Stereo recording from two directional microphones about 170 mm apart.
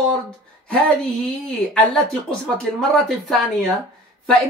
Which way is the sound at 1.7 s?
5° left (ahead or behind).